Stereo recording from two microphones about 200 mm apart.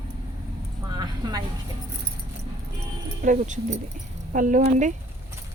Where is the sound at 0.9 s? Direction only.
20° right (ahead or behind).